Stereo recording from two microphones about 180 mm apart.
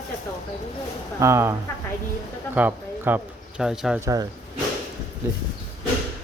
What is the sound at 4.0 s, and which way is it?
Speech, 20° right (ahead or behind).